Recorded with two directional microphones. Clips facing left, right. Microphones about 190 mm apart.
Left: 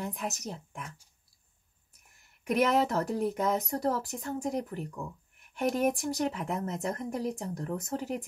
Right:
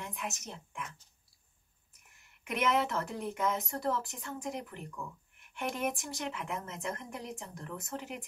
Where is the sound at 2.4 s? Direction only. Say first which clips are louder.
Left 5 dB; 40° left (ahead or behind).